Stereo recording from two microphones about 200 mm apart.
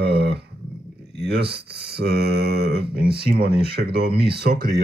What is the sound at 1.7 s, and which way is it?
Mantra, 55° right (ahead or behind).